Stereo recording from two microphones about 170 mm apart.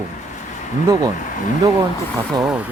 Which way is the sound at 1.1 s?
50° left (ahead or behind).